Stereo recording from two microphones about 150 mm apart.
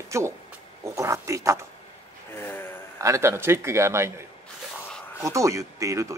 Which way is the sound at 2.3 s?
15° left (ahead or behind).